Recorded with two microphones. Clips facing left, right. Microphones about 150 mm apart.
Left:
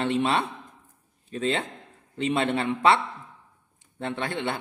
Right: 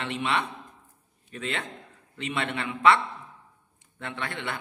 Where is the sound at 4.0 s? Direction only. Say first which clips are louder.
Left 6 dB; 30° left (ahead or behind).